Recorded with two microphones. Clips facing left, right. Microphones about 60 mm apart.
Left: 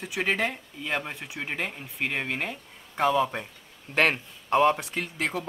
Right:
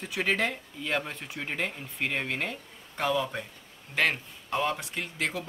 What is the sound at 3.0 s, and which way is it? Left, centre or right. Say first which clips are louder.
Speech: left 5 dB; left.